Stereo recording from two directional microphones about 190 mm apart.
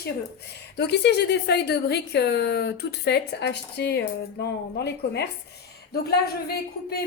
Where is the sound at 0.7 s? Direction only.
60° left (ahead or behind).